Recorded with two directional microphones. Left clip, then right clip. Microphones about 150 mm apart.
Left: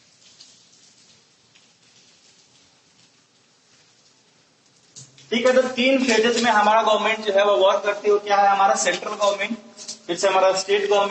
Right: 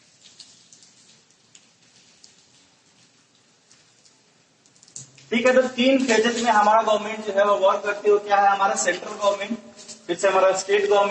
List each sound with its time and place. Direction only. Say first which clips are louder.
5.3 s a man's voice: even; 30° left (ahead or behind)